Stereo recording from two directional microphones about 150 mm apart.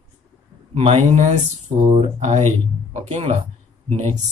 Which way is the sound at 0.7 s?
45° right (ahead or behind).